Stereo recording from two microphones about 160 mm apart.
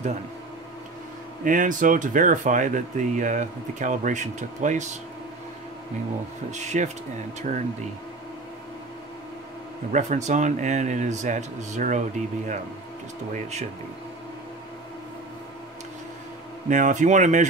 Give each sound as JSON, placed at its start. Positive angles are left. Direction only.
{"t": 1.4, "sound": "speech", "side_deg": -55}
{"t": 6.5, "sound": "speech", "side_deg": -45}
{"t": 9.9, "sound": "speech", "side_deg": -45}
{"t": 13.3, "sound": "speech", "side_deg": -45}
{"t": 16.6, "sound": "speech", "side_deg": -55}